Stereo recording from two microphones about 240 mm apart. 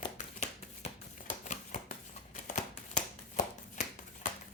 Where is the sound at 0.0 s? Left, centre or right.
Left.